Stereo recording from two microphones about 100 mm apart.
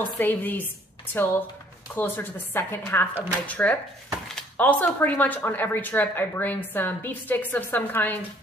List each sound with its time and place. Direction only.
0.0 s speech: 20° left (ahead or behind)